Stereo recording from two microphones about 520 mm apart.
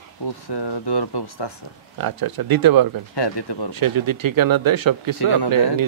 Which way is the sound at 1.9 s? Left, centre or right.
Right.